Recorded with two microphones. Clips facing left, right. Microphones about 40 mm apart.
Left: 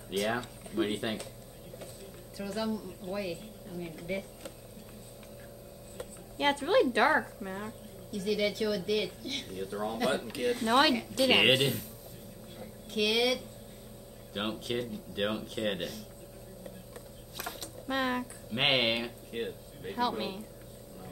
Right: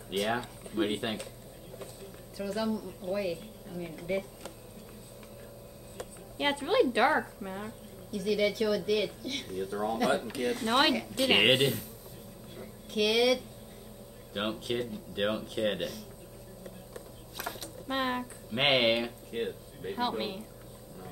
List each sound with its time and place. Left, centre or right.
0.1 s a woman's voice: centre
2.3 s a woman's voice: centre
6.3 s a woman's voice: centre
11.1 s a woman's voice: centre
11.4 s a woman's voice: centre
12.5 s a sound: centre
14.3 s a woman's voice: centre
17.4 s a sound: centre
17.9 s a woman's voice: centre
18.5 s speech: centre
20.0 s a woman's voice: right